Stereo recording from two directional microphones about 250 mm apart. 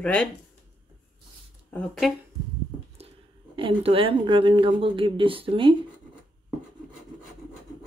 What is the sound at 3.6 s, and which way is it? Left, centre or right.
Speech, right.